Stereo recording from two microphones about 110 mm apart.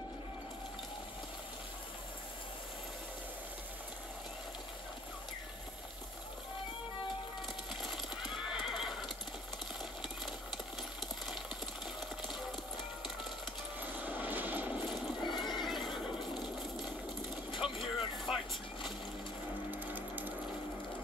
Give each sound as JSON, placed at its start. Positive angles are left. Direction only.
{"t": 7.8, "sound": "neigh", "side_deg": 0}
{"t": 12.3, "sound": "music", "side_deg": 0}
{"t": 13.8, "sound": "vehicle", "side_deg": -15}
{"t": 14.9, "sound": "neigh", "side_deg": 0}
{"t": 17.6, "sound": "vehicle", "side_deg": 0}
{"t": 19.7, "sound": "sewing machine", "side_deg": -15}